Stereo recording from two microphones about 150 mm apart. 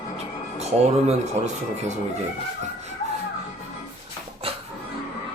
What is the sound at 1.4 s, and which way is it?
Speech, 45° right (ahead or behind).